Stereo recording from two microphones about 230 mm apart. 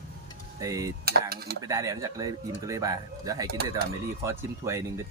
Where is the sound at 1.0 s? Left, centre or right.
Right.